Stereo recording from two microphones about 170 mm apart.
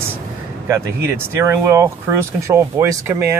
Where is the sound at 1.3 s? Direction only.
15° right (ahead or behind).